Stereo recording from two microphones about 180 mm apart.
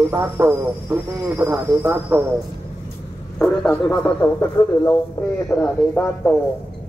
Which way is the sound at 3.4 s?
5° left (ahead or behind).